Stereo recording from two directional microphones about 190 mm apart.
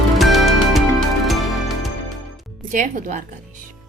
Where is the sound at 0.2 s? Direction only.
Centre (ahead or behind).